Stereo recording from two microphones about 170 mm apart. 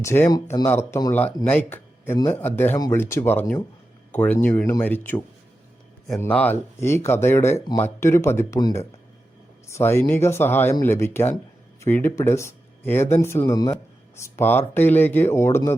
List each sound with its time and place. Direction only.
0.0 s speech: 15° left (ahead or behind)